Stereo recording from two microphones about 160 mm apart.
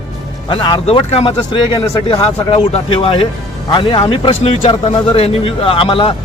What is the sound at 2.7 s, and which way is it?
A man's voice, 35° left (ahead or behind).